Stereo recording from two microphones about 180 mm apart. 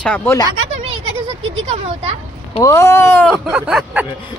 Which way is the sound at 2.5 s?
15° left (ahead or behind).